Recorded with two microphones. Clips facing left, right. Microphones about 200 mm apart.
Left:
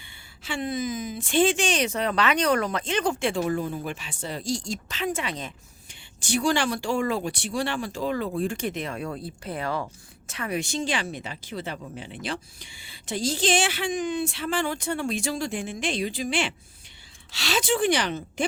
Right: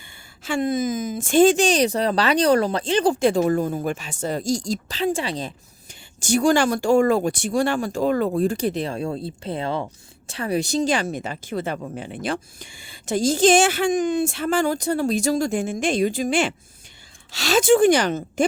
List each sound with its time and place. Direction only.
0.0 s a woman's voice: 45° right (ahead or behind)